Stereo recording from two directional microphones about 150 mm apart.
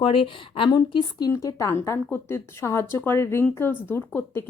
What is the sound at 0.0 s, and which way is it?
A woman's voice, 35° left (ahead or behind).